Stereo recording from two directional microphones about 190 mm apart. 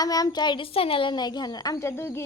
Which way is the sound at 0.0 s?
20° left (ahead or behind).